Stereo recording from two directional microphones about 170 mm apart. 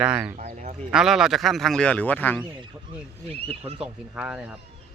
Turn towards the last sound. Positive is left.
turn(degrees=-5)  # may be behind; listen again after turning